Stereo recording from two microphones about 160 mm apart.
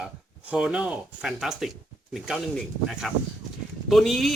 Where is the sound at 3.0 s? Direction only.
Centre (ahead or behind).